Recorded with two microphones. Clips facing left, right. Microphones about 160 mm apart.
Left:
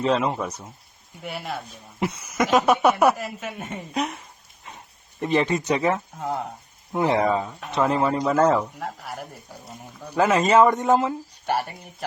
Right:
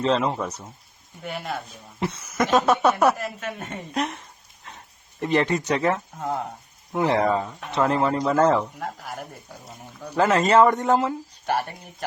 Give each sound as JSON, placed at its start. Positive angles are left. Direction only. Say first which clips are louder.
{"t": 0.0, "sound": "speech", "louder": "even", "side_deg": 10}
{"t": 5.2, "sound": "speech", "louder": "even", "side_deg": 15}
{"t": 6.1, "sound": "speech", "louder": "even", "side_deg": 0}
{"t": 6.9, "sound": "speech", "louder": "even", "side_deg": 15}
{"t": 7.2, "sound": "speech", "louder": "even", "side_deg": 5}
{"t": 10.2, "sound": "speech", "louder": "even", "side_deg": 15}